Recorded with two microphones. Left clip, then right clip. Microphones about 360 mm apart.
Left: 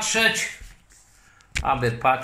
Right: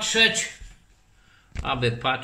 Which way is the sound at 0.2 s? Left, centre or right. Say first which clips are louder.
Right 1 dB; right.